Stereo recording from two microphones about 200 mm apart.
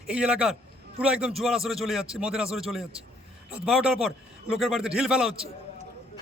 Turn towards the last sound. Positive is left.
turn(degrees=-30)  # may be behind; listen again after turning